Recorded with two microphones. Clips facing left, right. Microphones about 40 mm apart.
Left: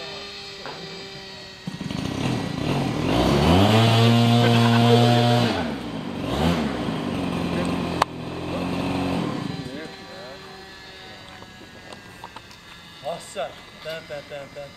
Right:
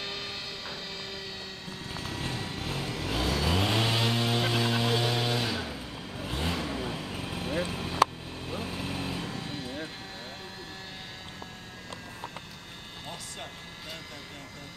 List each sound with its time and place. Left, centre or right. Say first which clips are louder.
0.0 s music: left 1 dB; centre
1.9 s vehicle: left 9 dB; left
9.5 s vehicle: left 4 dB; centre
13.4 s a sound: left 15 dB; left